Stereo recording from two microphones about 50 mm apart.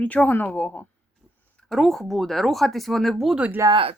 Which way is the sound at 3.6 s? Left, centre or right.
Right.